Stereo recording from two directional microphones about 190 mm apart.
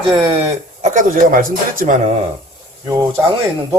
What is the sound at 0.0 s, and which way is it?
Speech, 25° right (ahead or behind).